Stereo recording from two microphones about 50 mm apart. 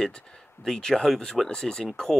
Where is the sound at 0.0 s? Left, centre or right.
Centre.